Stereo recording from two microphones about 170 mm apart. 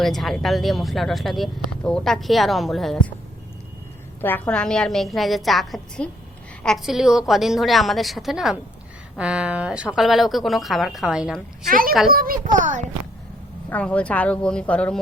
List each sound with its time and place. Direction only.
0.0 s speech: centre (ahead or behind)
4.2 s speech: 10° left (ahead or behind)
11.7 s a woman's voice: 55° right (ahead or behind)
13.7 s speech: 10° left (ahead or behind)